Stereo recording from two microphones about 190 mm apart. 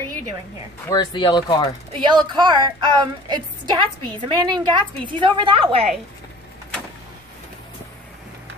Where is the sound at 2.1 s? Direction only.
25° right (ahead or behind).